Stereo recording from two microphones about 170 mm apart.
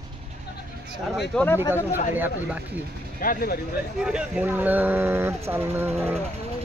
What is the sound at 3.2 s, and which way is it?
Speech, 60° left (ahead or behind).